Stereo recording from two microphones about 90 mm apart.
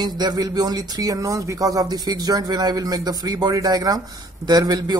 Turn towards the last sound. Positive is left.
turn(degrees=-45)  # may be behind; listen again after turning